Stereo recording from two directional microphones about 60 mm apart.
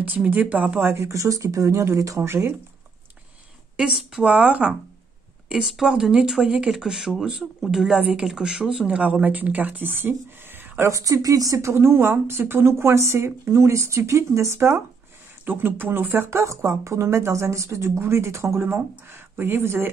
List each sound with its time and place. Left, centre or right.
0.0 s speech: right
0.7 s speech: right
2.2 s speech: right
3.7 s speech: centre
4.2 s speech: right
5.5 s speech: centre; by 10.9 s right
10.9 s speech: right
11.7 s speech: right
15.4 s speech: right
16.3 s speech: right